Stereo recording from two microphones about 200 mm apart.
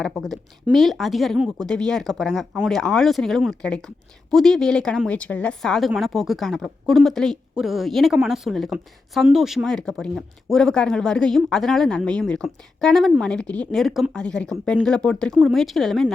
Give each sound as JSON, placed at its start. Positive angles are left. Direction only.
{"t": 0.0, "sound": "a woman's voice", "side_deg": 0}